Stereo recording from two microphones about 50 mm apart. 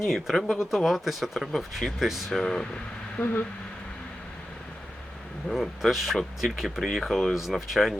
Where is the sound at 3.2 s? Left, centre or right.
Left.